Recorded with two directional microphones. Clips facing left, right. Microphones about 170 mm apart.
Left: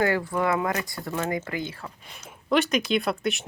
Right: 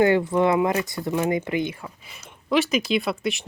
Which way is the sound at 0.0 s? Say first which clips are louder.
Right 6 dB; 20° right (ahead or behind).